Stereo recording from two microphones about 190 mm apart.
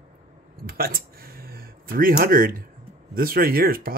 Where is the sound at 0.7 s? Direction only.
50° right (ahead or behind).